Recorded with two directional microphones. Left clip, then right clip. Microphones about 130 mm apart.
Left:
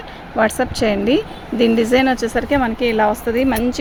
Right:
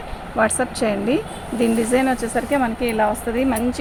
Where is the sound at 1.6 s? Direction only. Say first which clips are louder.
Left 4 dB; 90° left.